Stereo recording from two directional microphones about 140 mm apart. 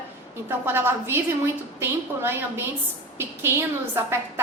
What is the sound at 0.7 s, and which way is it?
A woman's voice, 15° right (ahead or behind).